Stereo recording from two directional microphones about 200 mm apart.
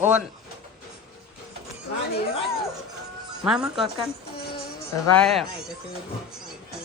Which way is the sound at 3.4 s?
Centre (ahead or behind).